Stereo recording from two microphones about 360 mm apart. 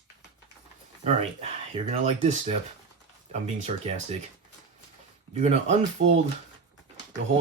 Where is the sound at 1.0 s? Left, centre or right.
Centre.